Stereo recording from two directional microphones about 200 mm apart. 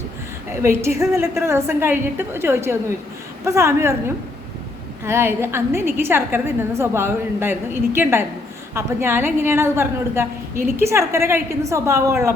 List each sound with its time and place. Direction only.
0.6 s a woman's voice: 15° right (ahead or behind)